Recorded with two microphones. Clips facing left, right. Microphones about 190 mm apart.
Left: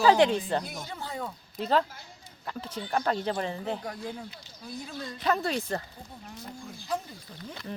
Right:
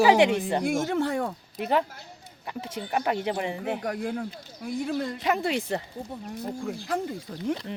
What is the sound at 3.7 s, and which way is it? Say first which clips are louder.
Speech: right 7 dB; 75° right (ahead or behind).